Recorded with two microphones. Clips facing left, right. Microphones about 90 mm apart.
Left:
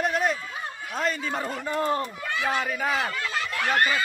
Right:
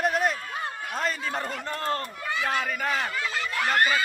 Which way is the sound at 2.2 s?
Centre (ahead or behind).